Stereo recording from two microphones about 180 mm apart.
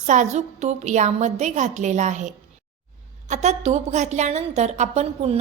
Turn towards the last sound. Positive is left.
turn(degrees=-35)  # may be behind; listen again after turning